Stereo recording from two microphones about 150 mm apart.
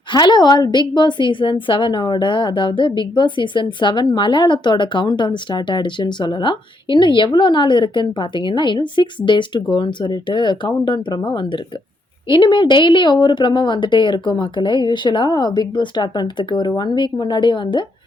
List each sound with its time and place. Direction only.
0.1 s a woman's voice: 30° left (ahead or behind)